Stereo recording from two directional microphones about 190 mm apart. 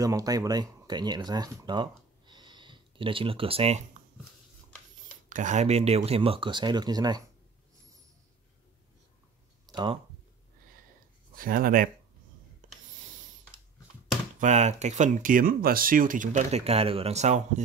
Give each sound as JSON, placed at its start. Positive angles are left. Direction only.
{"t": 0.0, "sound": "speech", "side_deg": -20}
{"t": 5.3, "sound": "speech", "side_deg": -40}
{"t": 9.7, "sound": "a sound", "side_deg": -20}
{"t": 11.3, "sound": "speech", "side_deg": -45}
{"t": 12.6, "sound": "a sound", "side_deg": -40}
{"t": 14.4, "sound": "speech", "side_deg": -40}